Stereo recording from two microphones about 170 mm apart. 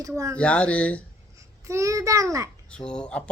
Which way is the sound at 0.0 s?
20° right (ahead or behind).